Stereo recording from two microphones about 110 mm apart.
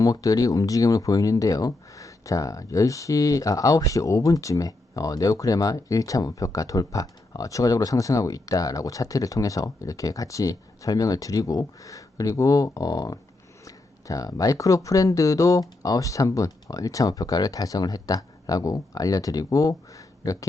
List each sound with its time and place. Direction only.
0.0 s speech: 30° left (ahead or behind)